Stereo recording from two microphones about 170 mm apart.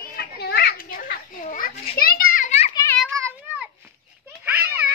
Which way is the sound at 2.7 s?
20° left (ahead or behind).